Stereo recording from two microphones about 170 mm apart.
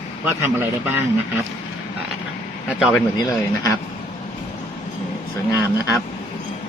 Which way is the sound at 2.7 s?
Centre (ahead or behind).